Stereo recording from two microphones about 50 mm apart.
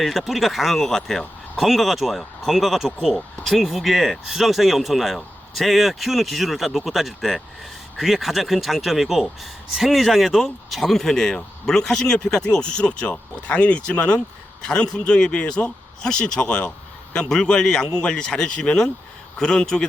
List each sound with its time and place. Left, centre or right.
0.0 s speech: centre